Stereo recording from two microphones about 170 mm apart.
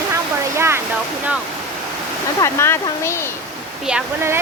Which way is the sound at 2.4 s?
15° left (ahead or behind).